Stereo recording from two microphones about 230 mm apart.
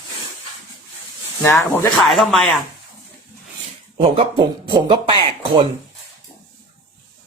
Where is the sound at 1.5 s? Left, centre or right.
Centre.